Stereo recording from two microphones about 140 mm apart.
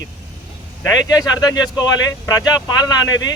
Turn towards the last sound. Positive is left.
turn(degrees=30)  # may be behind; listen again after turning